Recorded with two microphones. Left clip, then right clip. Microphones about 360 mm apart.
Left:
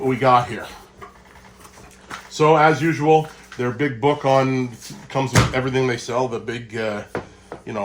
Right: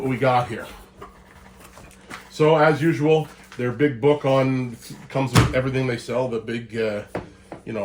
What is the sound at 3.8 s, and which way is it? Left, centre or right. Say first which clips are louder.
Speech: right 1 dB; centre.